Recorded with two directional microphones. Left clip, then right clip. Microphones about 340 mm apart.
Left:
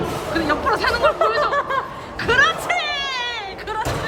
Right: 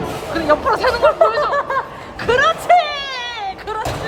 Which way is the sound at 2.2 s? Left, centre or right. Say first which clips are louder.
Right 2 dB; centre.